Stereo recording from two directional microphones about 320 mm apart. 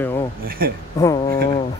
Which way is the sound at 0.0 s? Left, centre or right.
Centre.